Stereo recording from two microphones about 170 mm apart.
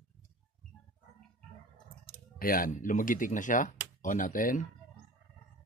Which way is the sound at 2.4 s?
55° left (ahead or behind).